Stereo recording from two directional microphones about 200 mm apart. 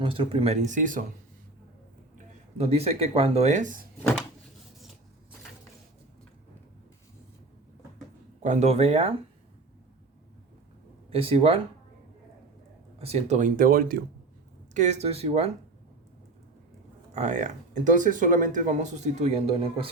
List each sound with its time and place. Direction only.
0.0 s speech: 25° right (ahead or behind)
2.1 s speech: 30° right (ahead or behind)
8.4 s speech: 35° right (ahead or behind)
11.1 s speech: 30° right (ahead or behind)
13.0 s speech: 30° right (ahead or behind)
14.7 s speech: 35° right (ahead or behind)
17.2 s speech: 35° right (ahead or behind)